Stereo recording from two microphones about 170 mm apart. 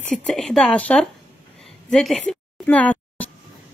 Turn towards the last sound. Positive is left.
turn(degrees=10)  # may be behind; listen again after turning